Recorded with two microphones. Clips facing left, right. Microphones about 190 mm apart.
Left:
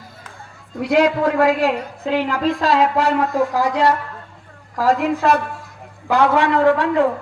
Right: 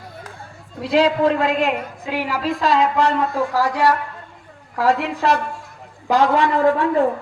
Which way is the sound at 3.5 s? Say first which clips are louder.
Left 1 dB; 20° left (ahead or behind).